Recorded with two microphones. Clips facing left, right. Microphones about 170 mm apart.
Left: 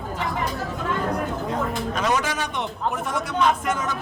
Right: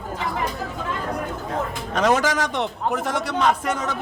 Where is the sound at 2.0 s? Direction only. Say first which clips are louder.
Right 6 dB; 90° right.